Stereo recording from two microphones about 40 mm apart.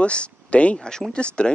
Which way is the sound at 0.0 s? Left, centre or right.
Left.